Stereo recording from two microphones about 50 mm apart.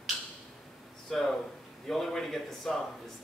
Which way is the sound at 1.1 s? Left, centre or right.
Centre.